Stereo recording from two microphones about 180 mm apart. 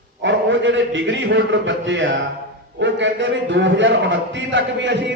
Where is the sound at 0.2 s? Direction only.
90° right.